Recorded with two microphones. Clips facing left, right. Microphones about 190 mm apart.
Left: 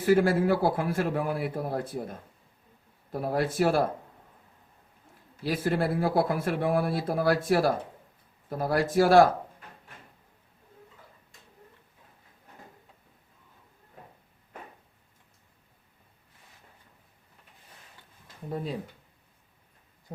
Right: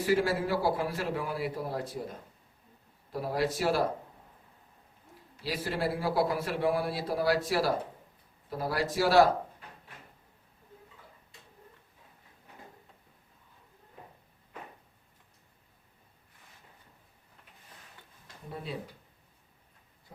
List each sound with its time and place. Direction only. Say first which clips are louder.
0.0 s a man's voice: left 5 dB; 50° left (ahead or behind)
5.4 s a man's voice: left 5 dB; 50° left (ahead or behind)
20.1 s speech: left 10 dB; 30° left (ahead or behind)